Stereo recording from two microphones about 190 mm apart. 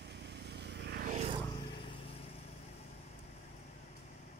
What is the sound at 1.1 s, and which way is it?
Vehicle, 35° right (ahead or behind).